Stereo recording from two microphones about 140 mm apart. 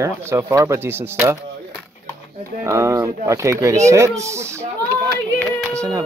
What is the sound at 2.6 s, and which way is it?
Speech, 20° right (ahead or behind).